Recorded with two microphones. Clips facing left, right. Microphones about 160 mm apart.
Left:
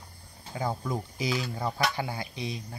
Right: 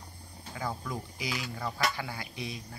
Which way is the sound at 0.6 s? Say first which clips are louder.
Left 5 dB; 30° left (ahead or behind).